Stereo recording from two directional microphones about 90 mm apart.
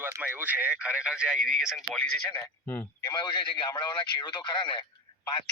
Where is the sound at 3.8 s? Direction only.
60° left (ahead or behind).